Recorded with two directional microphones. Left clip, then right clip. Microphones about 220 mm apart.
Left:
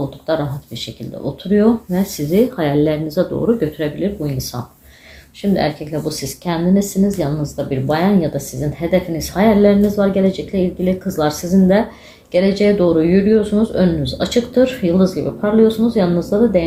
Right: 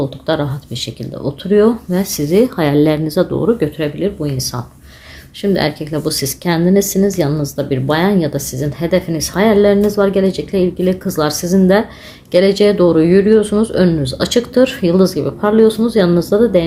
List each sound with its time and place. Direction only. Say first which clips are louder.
0.3 s speech: right 1 dB; 45° right (ahead or behind)